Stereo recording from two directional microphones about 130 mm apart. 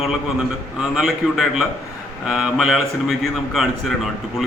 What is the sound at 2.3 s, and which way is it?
A man's voice, 5° right (ahead or behind).